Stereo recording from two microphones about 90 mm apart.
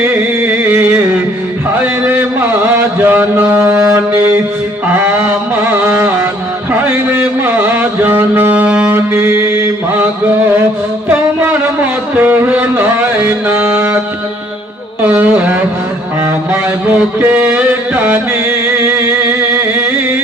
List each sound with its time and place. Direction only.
0.0 s music: 25° right (ahead or behind)
1.8 s a sound: 20° right (ahead or behind)
2.7 s mantra: 20° right (ahead or behind)
5.7 s carnatic music: 25° right (ahead or behind)
6.8 s music: 20° right (ahead or behind)
8.9 s mantra: 25° right (ahead or behind)
12.1 s music: 20° right (ahead or behind)
15.0 s a sound: 20° right (ahead or behind)
16.5 s music: 20° right (ahead or behind)